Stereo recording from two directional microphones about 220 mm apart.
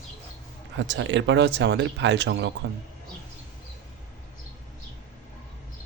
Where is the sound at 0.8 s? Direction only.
55° right (ahead or behind).